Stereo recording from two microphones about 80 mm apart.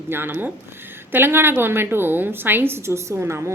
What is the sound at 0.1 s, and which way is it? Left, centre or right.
A woman's voice, right.